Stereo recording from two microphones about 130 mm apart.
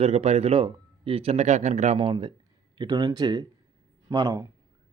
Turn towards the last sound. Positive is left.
turn(degrees=-25)  # may be behind; listen again after turning